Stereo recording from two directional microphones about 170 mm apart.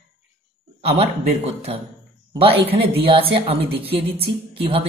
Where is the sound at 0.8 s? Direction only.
35° right (ahead or behind).